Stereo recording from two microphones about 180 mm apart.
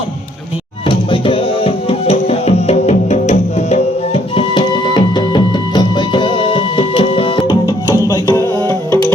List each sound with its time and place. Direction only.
0.9 s tabla: 30° left (ahead or behind)